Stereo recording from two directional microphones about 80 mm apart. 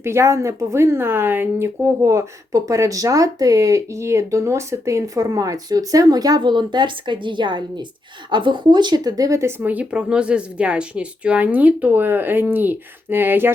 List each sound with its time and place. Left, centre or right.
0.0 s speech: right
6.4 s a woman's voice: right
9.4 s speech: right